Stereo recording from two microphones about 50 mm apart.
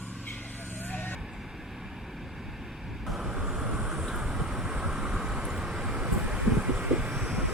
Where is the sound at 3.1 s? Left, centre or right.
Centre.